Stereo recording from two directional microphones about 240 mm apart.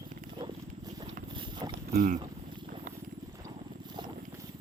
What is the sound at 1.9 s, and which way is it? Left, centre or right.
Speech, right.